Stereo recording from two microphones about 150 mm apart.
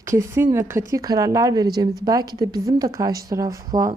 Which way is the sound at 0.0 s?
20° right (ahead or behind).